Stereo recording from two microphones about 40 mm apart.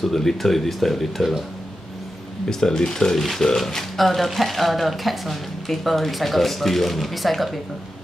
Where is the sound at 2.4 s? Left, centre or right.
Centre.